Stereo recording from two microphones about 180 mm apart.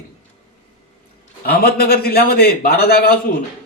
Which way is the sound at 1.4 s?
55° left (ahead or behind).